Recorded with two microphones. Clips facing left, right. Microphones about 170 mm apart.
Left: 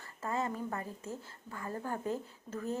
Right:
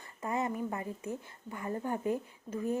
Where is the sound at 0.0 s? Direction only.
20° right (ahead or behind).